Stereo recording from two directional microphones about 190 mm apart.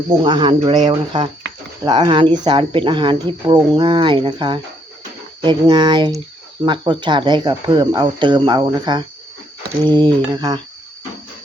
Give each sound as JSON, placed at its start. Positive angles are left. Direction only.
{"t": 0.2, "sound": "speech", "side_deg": -25}